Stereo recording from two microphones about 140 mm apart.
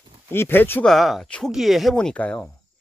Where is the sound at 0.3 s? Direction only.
15° left (ahead or behind).